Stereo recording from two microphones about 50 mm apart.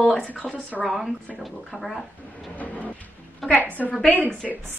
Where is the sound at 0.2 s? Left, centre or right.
Right.